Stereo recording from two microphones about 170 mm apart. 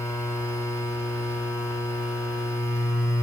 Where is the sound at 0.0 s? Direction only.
15° left (ahead or behind).